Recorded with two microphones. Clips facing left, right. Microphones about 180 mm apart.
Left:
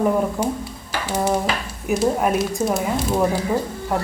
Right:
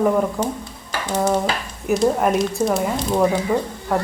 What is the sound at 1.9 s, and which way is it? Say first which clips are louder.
Speech: right 2 dB; 5° left (ahead or behind).